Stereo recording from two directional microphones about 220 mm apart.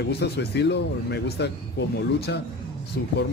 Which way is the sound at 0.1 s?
50° left (ahead or behind).